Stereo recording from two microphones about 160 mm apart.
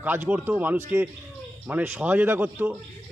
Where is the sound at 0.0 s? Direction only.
10° right (ahead or behind).